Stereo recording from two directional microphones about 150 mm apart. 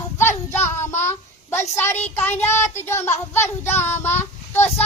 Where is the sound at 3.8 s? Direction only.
15° left (ahead or behind).